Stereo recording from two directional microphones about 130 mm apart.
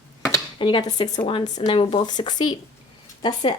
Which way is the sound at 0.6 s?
35° left (ahead or behind).